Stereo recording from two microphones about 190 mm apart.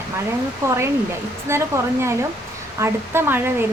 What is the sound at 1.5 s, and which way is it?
Speech, 15° right (ahead or behind).